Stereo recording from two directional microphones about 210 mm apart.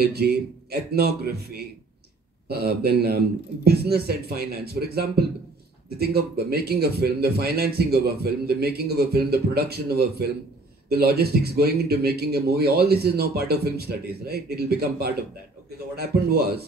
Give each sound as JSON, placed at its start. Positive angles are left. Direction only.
{"t": 0.0, "sound": "a man's voice", "side_deg": -50}